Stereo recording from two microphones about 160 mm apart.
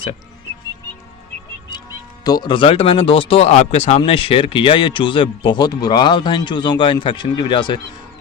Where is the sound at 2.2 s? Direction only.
30° left (ahead or behind).